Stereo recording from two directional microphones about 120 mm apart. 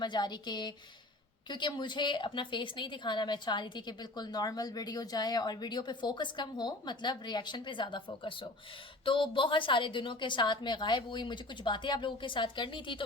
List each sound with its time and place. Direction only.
0.0 s a woman's voice: 40° left (ahead or behind)